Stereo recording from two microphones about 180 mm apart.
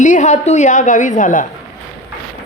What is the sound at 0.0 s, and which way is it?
A woman's voice, 40° left (ahead or behind).